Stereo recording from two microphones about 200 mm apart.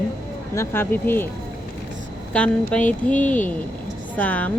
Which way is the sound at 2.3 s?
5° left (ahead or behind).